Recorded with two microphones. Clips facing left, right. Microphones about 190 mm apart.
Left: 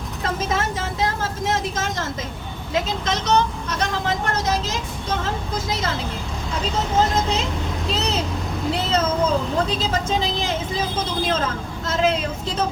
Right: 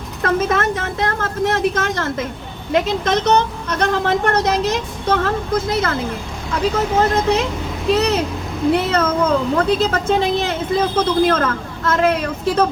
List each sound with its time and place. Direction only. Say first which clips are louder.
0.2 s speech: right 6 dB; 60° right (ahead or behind)
7.0 s speech: right 5 dB; 60° right (ahead or behind)